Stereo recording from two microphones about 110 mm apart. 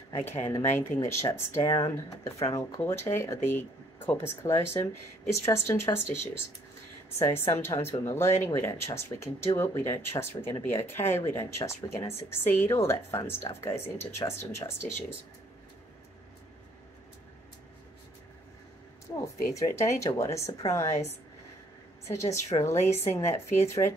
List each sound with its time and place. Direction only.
0.3 s speech: 25° left (ahead or behind)
19.1 s speech: 35° left (ahead or behind)